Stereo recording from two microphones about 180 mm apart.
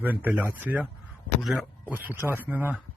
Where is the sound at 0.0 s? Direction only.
10° right (ahead or behind).